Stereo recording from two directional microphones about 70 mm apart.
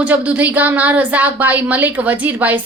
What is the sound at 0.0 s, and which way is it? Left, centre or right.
A woman's voice, centre.